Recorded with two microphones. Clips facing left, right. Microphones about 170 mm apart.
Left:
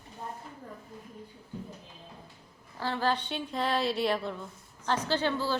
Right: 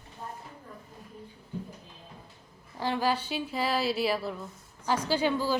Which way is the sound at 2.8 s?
15° right (ahead or behind).